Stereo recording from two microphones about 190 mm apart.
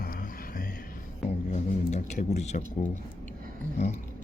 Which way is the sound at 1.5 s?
40° left (ahead or behind).